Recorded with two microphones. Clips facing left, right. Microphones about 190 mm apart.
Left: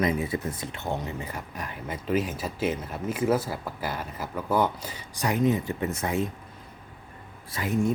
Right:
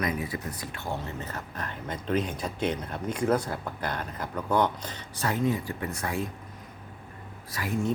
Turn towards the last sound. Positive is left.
turn(degrees=20)  # may be behind; listen again after turning